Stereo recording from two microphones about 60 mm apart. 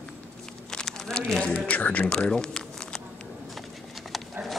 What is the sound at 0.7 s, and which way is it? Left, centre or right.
Crumpling, centre.